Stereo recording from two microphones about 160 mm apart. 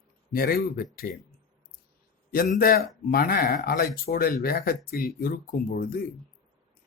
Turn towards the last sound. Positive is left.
turn(degrees=65)  # may be behind; listen again after turning